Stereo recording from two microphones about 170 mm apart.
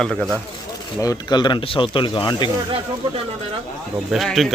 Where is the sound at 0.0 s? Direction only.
Centre (ahead or behind).